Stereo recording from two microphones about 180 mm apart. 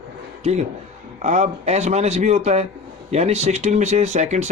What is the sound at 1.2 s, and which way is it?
Speech, 40° right (ahead or behind).